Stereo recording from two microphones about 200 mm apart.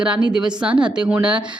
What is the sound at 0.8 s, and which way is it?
Speech, 5° right (ahead or behind).